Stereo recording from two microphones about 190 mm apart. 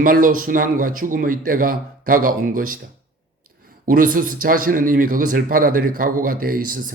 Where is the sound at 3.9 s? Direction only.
45° right (ahead or behind).